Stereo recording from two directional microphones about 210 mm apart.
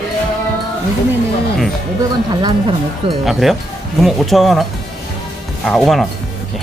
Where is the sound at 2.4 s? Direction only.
20° right (ahead or behind).